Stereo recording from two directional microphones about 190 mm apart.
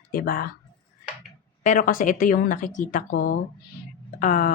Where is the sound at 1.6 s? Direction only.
45° left (ahead or behind).